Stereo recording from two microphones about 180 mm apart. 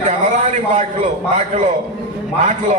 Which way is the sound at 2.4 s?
40° right (ahead or behind).